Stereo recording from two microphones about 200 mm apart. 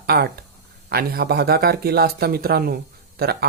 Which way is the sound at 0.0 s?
55° right (ahead or behind).